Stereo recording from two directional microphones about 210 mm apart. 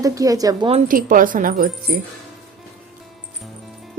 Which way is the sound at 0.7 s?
40° right (ahead or behind).